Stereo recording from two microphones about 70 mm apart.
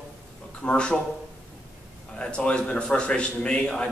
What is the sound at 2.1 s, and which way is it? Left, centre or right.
A man's voice, centre.